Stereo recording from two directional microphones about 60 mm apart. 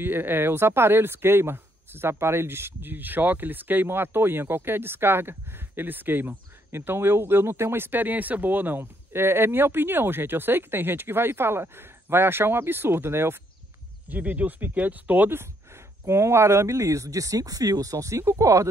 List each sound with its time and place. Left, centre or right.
0.0 s speech: right
14.0 s speech: right
16.1 s speech: right